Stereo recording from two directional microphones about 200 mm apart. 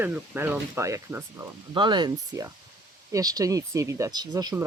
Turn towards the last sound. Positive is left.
turn(degrees=-20)  # may be behind; listen again after turning